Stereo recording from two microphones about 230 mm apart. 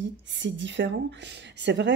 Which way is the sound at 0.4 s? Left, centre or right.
Right.